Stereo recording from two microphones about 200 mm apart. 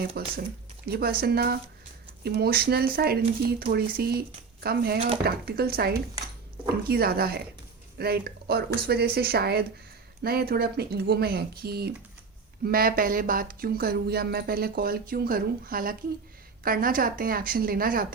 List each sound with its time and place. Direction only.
0.2 s speech: 55° right (ahead or behind)
4.9 s speech: 30° right (ahead or behind)
5.2 s speech: 50° right (ahead or behind)